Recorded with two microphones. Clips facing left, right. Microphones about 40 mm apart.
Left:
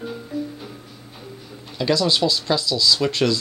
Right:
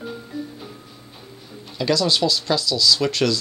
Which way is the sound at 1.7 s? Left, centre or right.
Centre.